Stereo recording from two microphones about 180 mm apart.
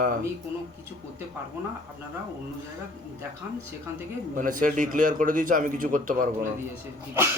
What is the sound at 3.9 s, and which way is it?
Speech, 15° right (ahead or behind).